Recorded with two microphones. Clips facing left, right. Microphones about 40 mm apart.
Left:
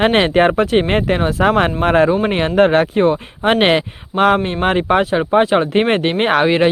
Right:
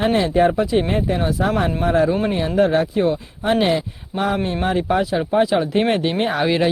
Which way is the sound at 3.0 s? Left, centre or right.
Left.